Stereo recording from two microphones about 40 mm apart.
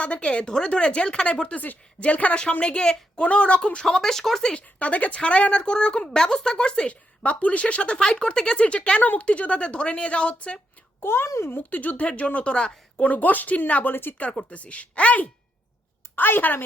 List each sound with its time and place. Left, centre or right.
0.0 s speech: left
1.5 s speech: left
3.8 s speech: centre
4.6 s speech: left
6.9 s speech: left
11.0 s a child's voice: left
11.7 s speech: left
13.0 s speech: left
13.9 s a woman's voice: left
14.3 s speech: left
16.1 s a woman's voice: left